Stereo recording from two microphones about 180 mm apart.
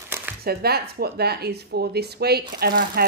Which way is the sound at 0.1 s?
15° right (ahead or behind).